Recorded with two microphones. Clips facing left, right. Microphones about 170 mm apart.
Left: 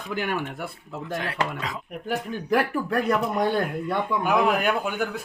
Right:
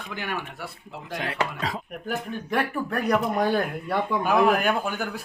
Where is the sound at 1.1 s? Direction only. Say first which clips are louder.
Even; 20° right (ahead or behind).